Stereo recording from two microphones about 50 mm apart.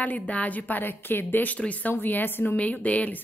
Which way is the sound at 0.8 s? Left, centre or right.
Left.